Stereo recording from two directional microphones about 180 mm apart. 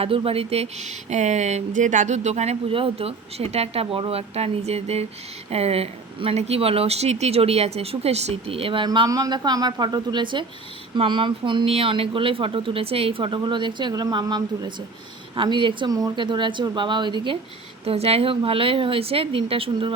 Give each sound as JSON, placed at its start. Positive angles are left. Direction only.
{"t": 0.0, "sound": "speech", "side_deg": -30}